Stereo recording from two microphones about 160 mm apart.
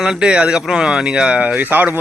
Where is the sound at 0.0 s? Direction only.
5° right (ahead or behind).